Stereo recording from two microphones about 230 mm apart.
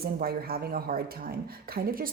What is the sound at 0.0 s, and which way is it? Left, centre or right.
Speech, right.